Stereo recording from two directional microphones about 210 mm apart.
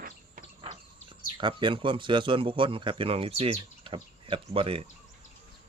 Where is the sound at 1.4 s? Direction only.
20° right (ahead or behind).